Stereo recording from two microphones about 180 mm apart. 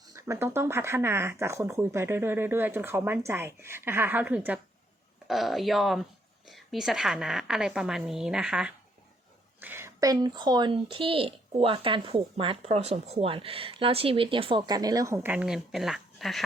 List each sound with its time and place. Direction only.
0.1 s a woman's voice: 15° right (ahead or behind); by 16.4 s centre (ahead or behind)